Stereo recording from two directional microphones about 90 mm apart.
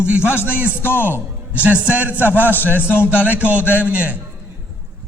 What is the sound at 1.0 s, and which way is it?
A man's voice, 20° right (ahead or behind).